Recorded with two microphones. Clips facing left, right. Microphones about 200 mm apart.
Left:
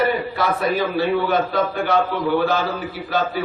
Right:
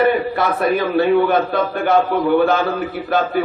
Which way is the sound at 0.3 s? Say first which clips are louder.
Right 3 dB; 55° right (ahead or behind).